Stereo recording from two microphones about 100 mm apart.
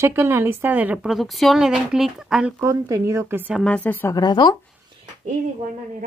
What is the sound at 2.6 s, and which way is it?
Speech, 30° right (ahead or behind).